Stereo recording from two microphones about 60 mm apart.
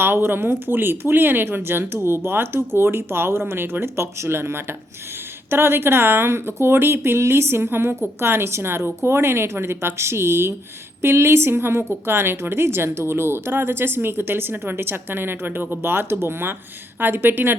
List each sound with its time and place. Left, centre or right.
0.0 s a woman's voice: right